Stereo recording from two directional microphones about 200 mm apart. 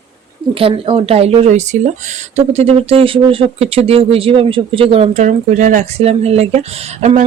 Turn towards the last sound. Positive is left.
turn(degrees=-35)  # may be behind; listen again after turning